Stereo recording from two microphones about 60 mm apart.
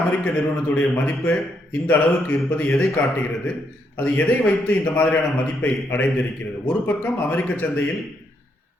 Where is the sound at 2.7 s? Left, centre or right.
Centre.